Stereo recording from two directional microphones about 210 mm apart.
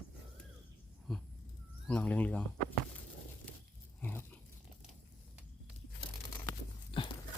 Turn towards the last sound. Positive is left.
turn(degrees=25)  # may be behind; listen again after turning